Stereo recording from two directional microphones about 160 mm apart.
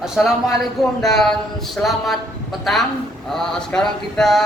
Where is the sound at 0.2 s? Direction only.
Centre (ahead or behind).